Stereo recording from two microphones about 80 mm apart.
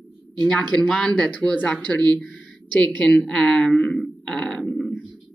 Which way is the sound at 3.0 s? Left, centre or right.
Centre.